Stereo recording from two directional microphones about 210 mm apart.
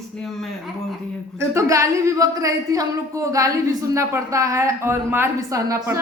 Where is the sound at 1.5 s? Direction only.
15° right (ahead or behind).